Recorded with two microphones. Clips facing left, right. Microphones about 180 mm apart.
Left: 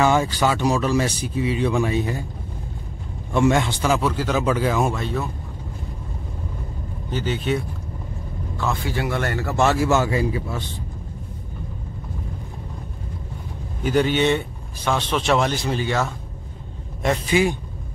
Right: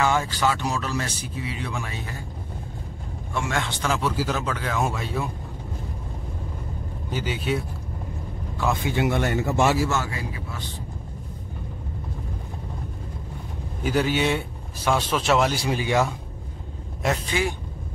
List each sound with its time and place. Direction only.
0.0 s speech: 20° left (ahead or behind)
3.4 s speech: 20° left (ahead or behind)
3.8 s speech: 5° left (ahead or behind)
4.1 s speech: 5° right (ahead or behind)
4.4 s speech: 10° left (ahead or behind); by 5.3 s 10° right (ahead or behind)
7.1 s speech: 10° right (ahead or behind)
9.8 s speech: 25° left (ahead or behind)
13.8 s speech: 5° right (ahead or behind)
17.3 s speech: 15° left (ahead or behind)